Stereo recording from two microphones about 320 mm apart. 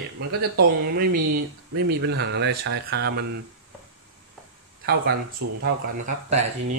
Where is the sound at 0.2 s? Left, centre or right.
Right.